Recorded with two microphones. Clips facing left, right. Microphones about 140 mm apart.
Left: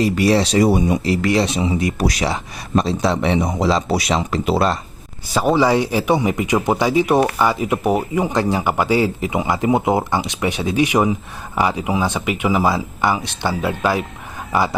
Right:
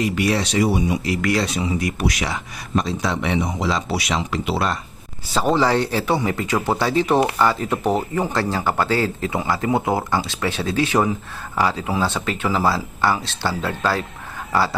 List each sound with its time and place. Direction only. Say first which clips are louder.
0.0 s speech: left 5 dB; 30° left (ahead or behind)
1.0 s speech: left 4 dB; 30° left (ahead or behind)
5.3 s speech: left 3 dB; 10° left (ahead or behind)